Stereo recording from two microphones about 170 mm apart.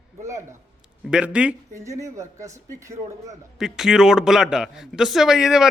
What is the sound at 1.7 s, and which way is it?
Speech, 20° right (ahead or behind).